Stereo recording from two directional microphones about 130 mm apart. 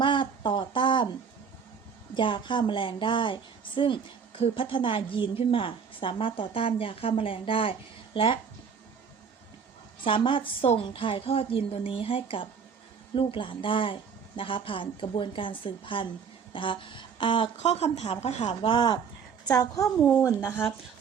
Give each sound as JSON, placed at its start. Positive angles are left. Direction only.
{"t": 0.0, "sound": "a sound", "side_deg": 40}
{"t": 2.1, "sound": "speech", "side_deg": 40}
{"t": 10.0, "sound": "a woman's voice", "side_deg": 40}
{"t": 16.5, "sound": "a sound", "side_deg": 40}
{"t": 17.6, "sound": "speech", "side_deg": 55}
{"t": 19.5, "sound": "a woman's voice", "side_deg": 25}
{"t": 20.0, "sound": "speech", "side_deg": 5}